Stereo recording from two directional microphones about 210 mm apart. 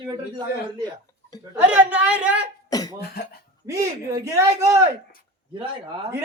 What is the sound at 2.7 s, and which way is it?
Cough, 15° left (ahead or behind).